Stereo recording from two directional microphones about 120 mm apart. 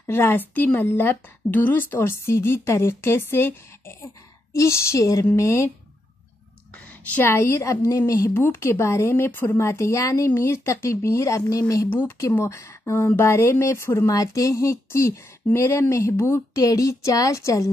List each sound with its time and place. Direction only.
0.0 s speech: 20° left (ahead or behind)
7.2 s speech: 20° left (ahead or behind)